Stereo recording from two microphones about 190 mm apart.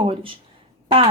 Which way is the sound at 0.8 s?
30° right (ahead or behind).